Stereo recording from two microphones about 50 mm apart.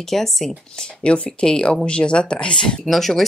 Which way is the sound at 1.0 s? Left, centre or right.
Centre.